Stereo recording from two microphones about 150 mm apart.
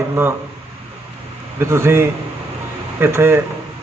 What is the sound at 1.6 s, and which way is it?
Speech, 15° right (ahead or behind).